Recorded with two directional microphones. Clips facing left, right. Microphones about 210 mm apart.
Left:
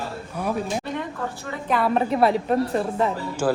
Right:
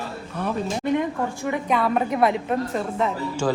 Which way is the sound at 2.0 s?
30° left (ahead or behind).